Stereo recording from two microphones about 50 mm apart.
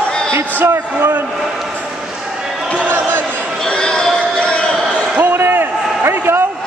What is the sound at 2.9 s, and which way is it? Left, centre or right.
Basketball bounce, right.